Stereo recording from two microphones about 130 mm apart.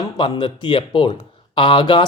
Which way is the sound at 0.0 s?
35° left (ahead or behind).